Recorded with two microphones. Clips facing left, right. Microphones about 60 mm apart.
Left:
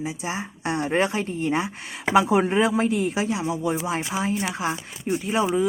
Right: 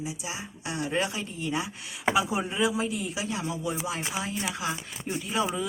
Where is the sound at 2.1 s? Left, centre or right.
Left.